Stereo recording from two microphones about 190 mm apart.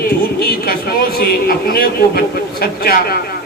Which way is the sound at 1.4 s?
55° left (ahead or behind).